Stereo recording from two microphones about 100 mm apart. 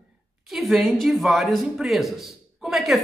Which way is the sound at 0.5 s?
Centre (ahead or behind).